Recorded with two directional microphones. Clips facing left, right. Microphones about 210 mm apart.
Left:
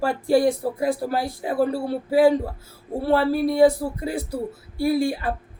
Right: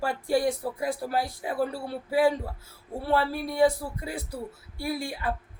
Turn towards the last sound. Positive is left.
turn(degrees=30)  # may be behind; listen again after turning